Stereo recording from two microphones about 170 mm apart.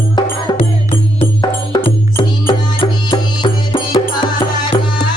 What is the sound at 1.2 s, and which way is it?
Music, 30° left (ahead or behind).